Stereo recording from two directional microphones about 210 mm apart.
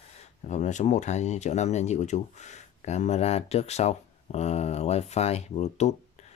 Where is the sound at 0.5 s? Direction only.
35° left (ahead or behind).